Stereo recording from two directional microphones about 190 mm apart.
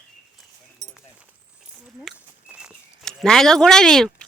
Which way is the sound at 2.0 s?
5° right (ahead or behind).